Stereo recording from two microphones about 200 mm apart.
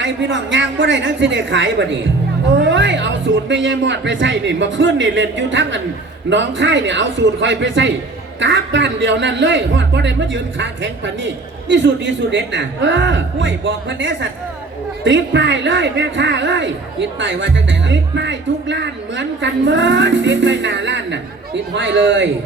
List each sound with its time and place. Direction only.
0.0 s speech: 65° right (ahead or behind)